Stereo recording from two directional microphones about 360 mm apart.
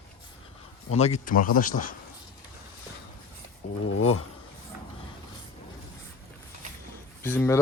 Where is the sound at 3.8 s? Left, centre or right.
Left.